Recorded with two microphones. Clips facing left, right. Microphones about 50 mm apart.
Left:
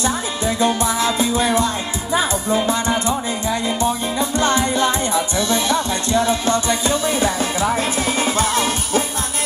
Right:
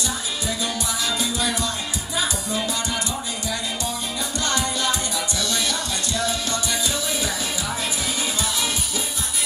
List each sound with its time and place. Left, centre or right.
0.0 s music: left